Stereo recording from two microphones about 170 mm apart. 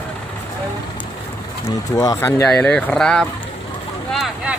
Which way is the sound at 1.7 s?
20° left (ahead or behind).